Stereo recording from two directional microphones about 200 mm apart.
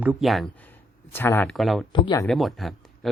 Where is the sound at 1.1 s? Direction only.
10° left (ahead or behind).